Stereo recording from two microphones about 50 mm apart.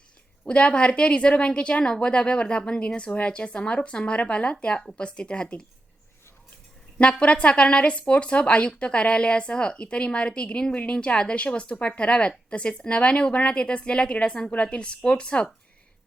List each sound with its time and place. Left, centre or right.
0.4 s a woman's voice: left
7.0 s a woman's voice: left